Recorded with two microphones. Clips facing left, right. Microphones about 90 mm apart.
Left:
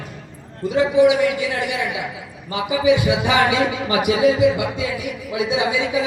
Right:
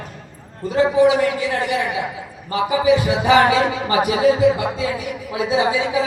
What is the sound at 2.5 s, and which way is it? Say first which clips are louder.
Music: right 1 dB; 40° right (ahead or behind).